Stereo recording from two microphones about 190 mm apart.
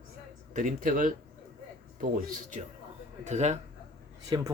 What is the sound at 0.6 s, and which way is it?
Speech, 45° right (ahead or behind).